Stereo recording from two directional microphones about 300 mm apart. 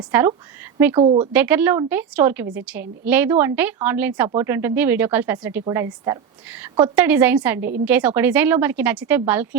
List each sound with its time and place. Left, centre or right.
0.1 s speech: centre
0.9 s speech: centre
1.3 s a woman's voice: centre